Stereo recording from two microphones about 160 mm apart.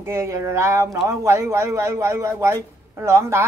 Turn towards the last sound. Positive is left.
turn(degrees=-15)  # may be behind; listen again after turning